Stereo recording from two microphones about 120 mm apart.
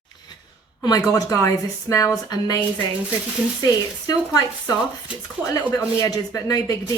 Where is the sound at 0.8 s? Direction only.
30° left (ahead or behind).